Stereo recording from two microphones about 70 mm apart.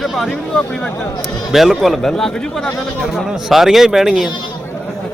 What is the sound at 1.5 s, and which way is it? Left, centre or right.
A man's voice, centre.